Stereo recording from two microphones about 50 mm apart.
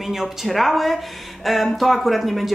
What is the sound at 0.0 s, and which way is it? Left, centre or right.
A woman's voice, centre.